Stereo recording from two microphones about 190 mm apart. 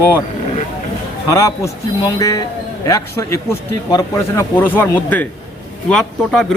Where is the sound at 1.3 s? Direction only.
15° left (ahead or behind).